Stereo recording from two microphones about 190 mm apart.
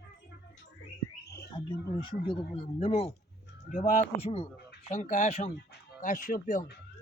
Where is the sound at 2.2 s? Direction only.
30° left (ahead or behind).